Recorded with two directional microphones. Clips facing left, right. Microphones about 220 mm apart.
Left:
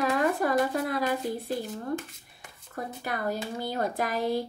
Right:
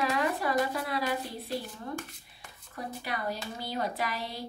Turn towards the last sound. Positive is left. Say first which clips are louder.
# left 8 dB
turn(degrees=50)  # may be behind; listen again after turning